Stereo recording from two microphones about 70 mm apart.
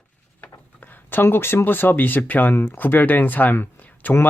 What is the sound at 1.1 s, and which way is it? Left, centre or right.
Speech, left.